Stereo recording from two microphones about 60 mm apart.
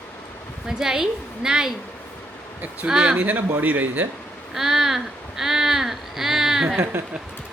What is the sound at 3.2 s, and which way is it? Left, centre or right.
Speech, right.